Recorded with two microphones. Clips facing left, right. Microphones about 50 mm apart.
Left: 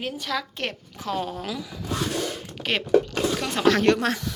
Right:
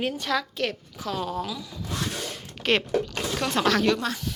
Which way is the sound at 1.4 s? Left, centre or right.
Left.